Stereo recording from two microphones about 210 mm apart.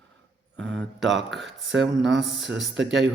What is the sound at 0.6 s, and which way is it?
Speech, 5° left (ahead or behind).